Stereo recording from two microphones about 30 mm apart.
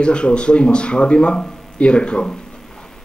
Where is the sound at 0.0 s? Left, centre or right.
Left.